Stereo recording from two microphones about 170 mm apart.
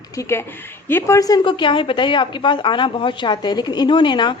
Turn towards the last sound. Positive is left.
turn(degrees=25)  # may be behind; listen again after turning